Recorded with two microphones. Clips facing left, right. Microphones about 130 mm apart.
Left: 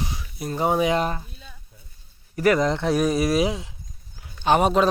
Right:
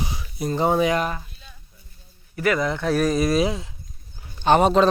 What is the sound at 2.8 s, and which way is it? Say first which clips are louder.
Speech: even; 20° left (ahead or behind).